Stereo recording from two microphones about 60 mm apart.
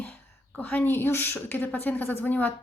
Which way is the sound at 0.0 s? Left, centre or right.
Left.